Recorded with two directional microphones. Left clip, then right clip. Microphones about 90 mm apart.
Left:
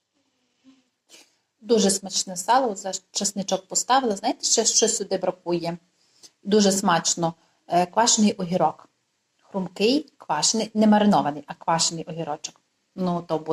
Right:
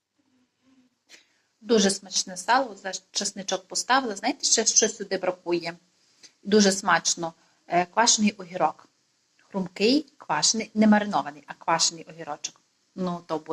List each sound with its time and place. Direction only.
1.0 s a woman's voice: 25° left (ahead or behind)